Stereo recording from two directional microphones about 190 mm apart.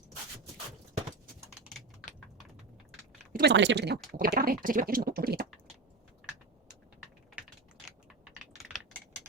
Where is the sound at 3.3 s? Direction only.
65° right (ahead or behind).